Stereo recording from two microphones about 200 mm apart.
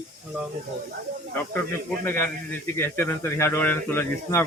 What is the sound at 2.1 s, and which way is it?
Speech, 10° left (ahead or behind).